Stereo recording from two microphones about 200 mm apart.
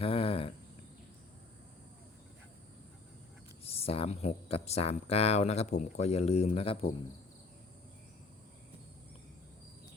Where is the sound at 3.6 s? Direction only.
30° left (ahead or behind).